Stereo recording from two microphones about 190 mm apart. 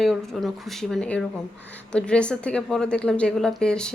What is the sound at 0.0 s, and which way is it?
A woman's voice, centre (ahead or behind).